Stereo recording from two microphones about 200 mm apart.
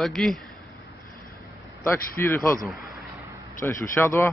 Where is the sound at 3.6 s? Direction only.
15° left (ahead or behind).